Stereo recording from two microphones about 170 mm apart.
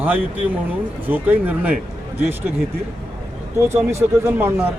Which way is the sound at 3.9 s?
15° right (ahead or behind).